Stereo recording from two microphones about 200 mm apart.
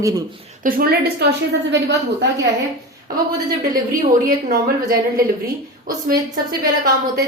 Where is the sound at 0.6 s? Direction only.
45° right (ahead or behind).